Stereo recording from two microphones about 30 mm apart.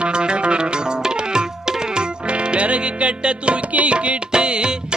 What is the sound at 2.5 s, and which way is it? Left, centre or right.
Music, right.